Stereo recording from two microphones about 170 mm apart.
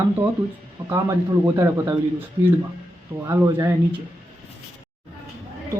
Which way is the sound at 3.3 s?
15° right (ahead or behind).